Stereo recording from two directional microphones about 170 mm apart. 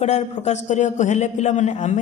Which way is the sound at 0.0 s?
40° left (ahead or behind).